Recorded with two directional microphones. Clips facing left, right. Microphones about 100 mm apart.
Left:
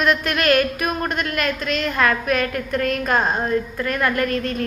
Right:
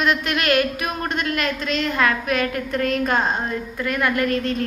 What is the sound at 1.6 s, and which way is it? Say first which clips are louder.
Speech: even; 30° right (ahead or behind).